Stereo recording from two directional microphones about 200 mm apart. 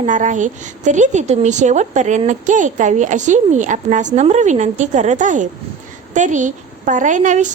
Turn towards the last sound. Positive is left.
turn(degrees=-40)  # may be behind; listen again after turning